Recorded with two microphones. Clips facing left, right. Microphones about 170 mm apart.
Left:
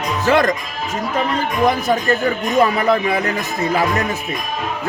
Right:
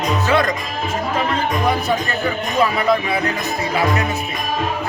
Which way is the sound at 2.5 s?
45° left (ahead or behind).